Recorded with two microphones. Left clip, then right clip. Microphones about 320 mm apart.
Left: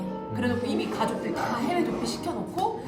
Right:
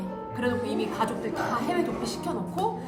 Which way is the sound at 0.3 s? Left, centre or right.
Centre.